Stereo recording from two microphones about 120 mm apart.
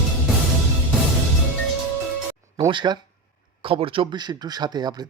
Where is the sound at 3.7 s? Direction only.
45° right (ahead or behind).